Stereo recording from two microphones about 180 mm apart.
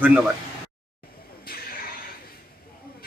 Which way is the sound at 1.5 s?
55° left (ahead or behind).